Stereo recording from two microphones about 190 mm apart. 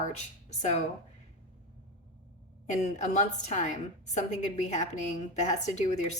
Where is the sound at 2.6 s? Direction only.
40° left (ahead or behind).